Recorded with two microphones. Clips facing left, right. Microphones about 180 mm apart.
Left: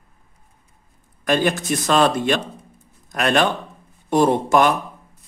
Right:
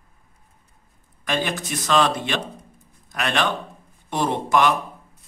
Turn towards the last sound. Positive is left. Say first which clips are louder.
# left 4 dB
turn(degrees=45)  # may be behind; listen again after turning